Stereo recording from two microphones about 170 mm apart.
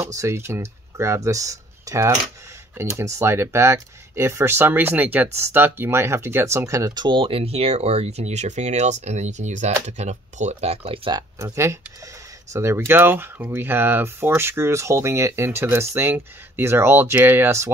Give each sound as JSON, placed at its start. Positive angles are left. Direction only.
{"t": 0.0, "sound": "speech", "side_deg": -15}